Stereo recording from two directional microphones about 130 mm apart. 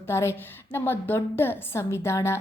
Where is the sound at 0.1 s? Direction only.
20° left (ahead or behind).